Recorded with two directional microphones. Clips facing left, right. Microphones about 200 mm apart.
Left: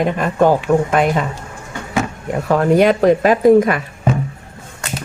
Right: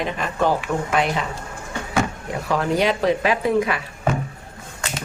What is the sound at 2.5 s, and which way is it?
Speech, 50° left (ahead or behind).